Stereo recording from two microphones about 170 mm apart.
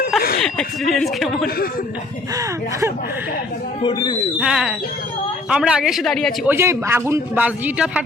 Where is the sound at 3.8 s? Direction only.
30° left (ahead or behind).